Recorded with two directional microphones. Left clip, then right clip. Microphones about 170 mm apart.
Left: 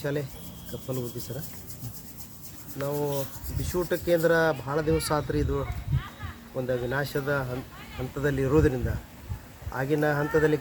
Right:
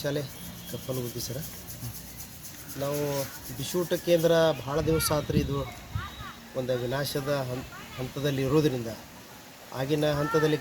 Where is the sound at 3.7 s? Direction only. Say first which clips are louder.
Even; 5° left (ahead or behind).